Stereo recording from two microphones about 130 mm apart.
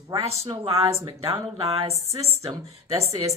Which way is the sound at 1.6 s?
50° right (ahead or behind).